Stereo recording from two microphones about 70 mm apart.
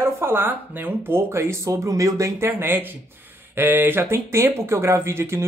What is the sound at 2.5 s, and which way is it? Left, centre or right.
Speech, right.